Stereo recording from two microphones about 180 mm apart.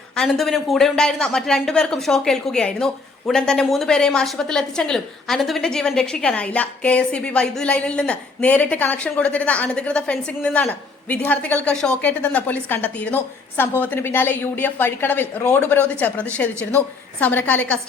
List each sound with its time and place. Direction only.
0.2 s a woman's voice: centre (ahead or behind)